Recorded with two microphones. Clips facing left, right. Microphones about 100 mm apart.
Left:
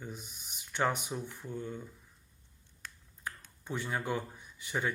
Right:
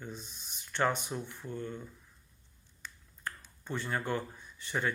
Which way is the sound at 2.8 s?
55° left (ahead or behind).